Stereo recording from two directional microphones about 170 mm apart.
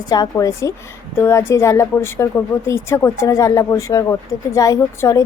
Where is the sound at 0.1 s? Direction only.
20° left (ahead or behind).